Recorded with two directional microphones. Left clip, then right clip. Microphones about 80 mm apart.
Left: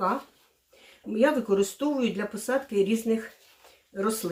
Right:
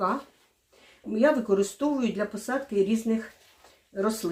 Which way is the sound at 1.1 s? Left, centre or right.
Centre.